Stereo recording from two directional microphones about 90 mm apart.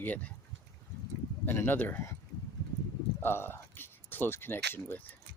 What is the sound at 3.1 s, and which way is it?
Speech, 25° left (ahead or behind).